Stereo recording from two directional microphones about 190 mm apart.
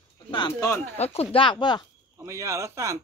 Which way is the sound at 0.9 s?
35° left (ahead or behind).